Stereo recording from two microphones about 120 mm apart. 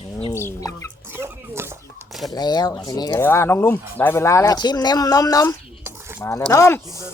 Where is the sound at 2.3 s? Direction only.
35° left (ahead or behind).